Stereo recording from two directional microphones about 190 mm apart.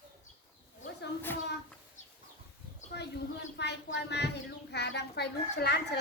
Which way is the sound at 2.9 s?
65° left (ahead or behind).